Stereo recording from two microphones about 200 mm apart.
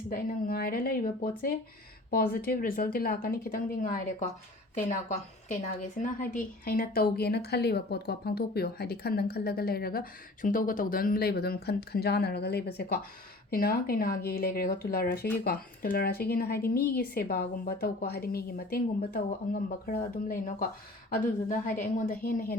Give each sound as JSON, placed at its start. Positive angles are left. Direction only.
{"t": 0.1, "sound": "a woman's voice", "side_deg": 45}